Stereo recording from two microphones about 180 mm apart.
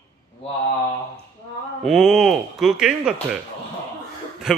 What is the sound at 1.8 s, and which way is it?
A man's voice, centre (ahead or behind).